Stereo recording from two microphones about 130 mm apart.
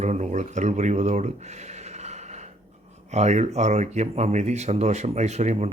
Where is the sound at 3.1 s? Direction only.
60° right (ahead or behind).